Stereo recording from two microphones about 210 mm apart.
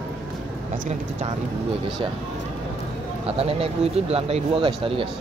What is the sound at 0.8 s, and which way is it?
Speech, 30° right (ahead or behind).